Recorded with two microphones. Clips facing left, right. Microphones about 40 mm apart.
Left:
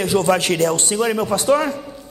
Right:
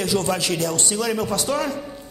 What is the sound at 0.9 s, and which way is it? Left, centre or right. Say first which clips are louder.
Speech: left 4 dB; left.